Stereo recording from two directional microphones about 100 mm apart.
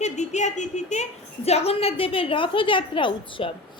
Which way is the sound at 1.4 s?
90° left.